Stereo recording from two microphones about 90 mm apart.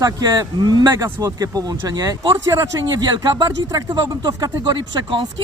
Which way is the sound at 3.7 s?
50° right (ahead or behind).